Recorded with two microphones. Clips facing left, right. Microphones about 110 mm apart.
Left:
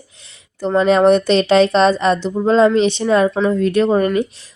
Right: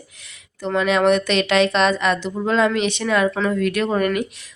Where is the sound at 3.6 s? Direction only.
30° left (ahead or behind).